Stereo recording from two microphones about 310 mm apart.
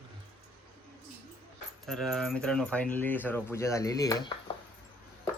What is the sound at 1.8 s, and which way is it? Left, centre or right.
Speech, centre.